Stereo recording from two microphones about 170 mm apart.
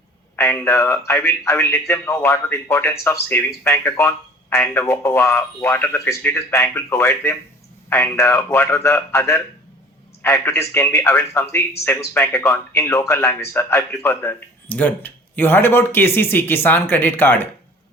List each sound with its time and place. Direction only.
0.3 s speech: 15° left (ahead or behind)